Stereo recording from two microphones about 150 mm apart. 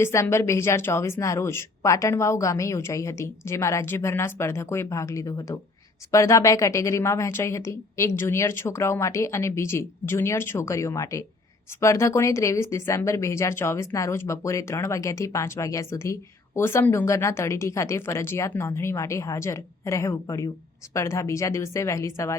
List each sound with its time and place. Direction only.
0.0 s speech: 20° left (ahead or behind)